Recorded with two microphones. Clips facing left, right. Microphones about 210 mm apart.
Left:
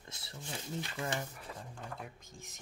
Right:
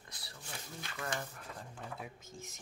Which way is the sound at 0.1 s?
25° left (ahead or behind).